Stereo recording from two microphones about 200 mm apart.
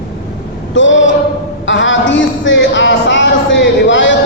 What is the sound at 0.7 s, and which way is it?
Male singing, 70° left (ahead or behind).